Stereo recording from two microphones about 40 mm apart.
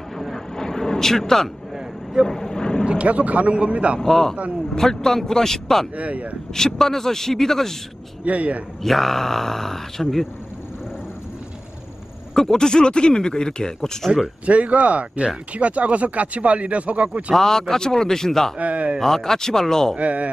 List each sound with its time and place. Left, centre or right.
0.6 s a sound: centre
2.2 s vehicle: centre
3.0 s speech: right
4.0 s speech: centre
5.9 s speech: right
6.5 s speech: centre
8.3 s speech: right
8.8 s speech: centre
12.4 s speech: centre
14.4 s speech: right
17.4 s speech: centre
18.6 s speech: right
18.9 s speech: centre
20.0 s speech: right